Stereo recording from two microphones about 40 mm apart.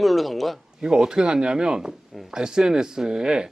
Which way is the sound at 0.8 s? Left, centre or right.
Centre.